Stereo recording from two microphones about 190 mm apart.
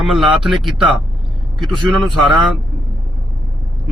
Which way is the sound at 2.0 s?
Centre (ahead or behind).